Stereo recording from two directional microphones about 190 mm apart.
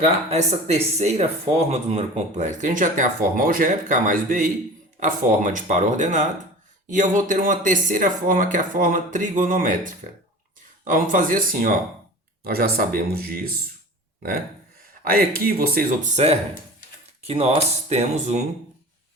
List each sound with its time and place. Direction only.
0.0 s speech: 35° right (ahead or behind); by 13.5 s 55° right (ahead or behind)
15.0 s speech: 50° right (ahead or behind); by 18.4 s 35° right (ahead or behind)